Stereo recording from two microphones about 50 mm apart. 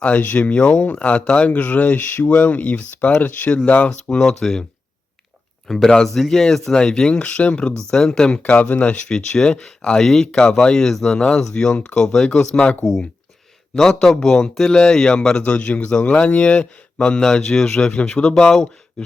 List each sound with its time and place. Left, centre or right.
0.0 s speech: left
3.8 s speech: centre
5.6 s speech: centre
7.1 s speech: left
7.9 s speech: centre
8.4 s speech: left
13.7 s speech: centre